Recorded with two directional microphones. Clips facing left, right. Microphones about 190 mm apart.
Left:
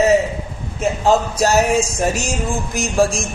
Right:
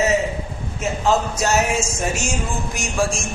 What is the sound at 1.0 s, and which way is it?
Music, 35° left (ahead or behind).